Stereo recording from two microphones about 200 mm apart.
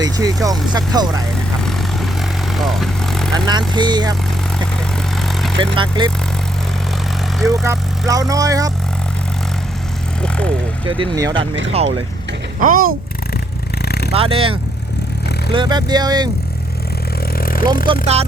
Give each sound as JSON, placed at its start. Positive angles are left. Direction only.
{"t": 0.0, "sound": "speech", "side_deg": -15}
{"t": 2.6, "sound": "vehicle", "side_deg": 0}
{"t": 3.4, "sound": "speech", "side_deg": -20}
{"t": 5.1, "sound": "vehicle", "side_deg": 0}
{"t": 5.5, "sound": "speech", "side_deg": -25}
{"t": 7.3, "sound": "speech", "side_deg": 0}
{"t": 7.6, "sound": "speech", "side_deg": -15}
{"t": 10.2, "sound": "vehicle", "side_deg": 5}
{"t": 10.8, "sound": "speech", "side_deg": -25}
{"t": 12.5, "sound": "speech", "side_deg": -45}
{"t": 13.8, "sound": "vehicle", "side_deg": 55}
{"t": 14.1, "sound": "speech", "side_deg": -30}
{"t": 17.3, "sound": "vehicle", "side_deg": 45}
{"t": 17.8, "sound": "speech", "side_deg": -30}